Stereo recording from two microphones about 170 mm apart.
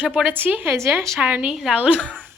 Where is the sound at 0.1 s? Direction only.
5° right (ahead or behind).